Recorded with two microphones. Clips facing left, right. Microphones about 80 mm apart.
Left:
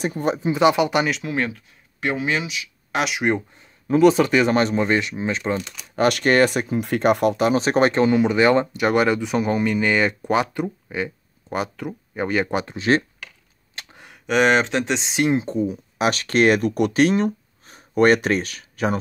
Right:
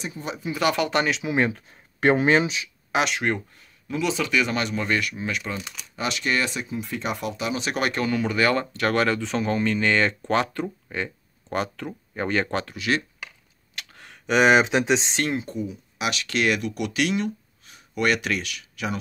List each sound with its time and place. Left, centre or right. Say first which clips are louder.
0.0 s speech: left 10 dB; left
0.4 s speech: left 5 dB; left
1.0 s speech: left 1 dB; centre
1.5 s speech: right 2 dB; right
2.9 s speech: even; centre
3.2 s speech: left 4 dB; centre
3.8 s speech: left 11 dB; left
4.7 s speech: left 5 dB; left
5.6 s speech: left 3 dB; centre
5.9 s speech: left 9 dB; left; by 12.7 s centre
12.7 s speech: left 7 dB; left
13.9 s speech: left 1 dB; centre
15.2 s speech: left 7 dB; left
15.5 s speech: left 7 dB; left